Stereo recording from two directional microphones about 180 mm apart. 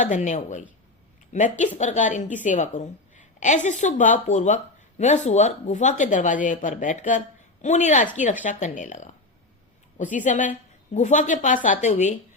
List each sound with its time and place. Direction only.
0.0 s a woman's voice: 45° left (ahead or behind)